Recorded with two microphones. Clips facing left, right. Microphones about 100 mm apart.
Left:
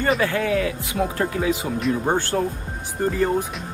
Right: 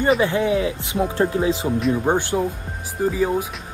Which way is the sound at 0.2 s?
20° right (ahead or behind).